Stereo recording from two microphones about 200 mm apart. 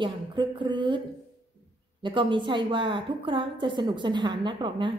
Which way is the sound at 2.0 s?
25° right (ahead or behind).